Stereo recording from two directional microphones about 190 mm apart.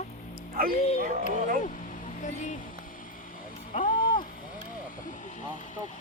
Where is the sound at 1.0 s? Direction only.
40° right (ahead or behind).